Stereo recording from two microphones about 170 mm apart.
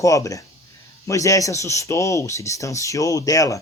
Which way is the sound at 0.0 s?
20° left (ahead or behind).